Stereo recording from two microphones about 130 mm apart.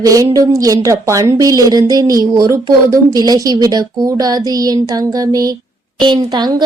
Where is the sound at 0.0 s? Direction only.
25° right (ahead or behind).